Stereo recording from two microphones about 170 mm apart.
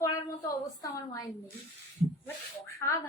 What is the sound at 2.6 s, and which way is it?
Speech, 15° left (ahead or behind).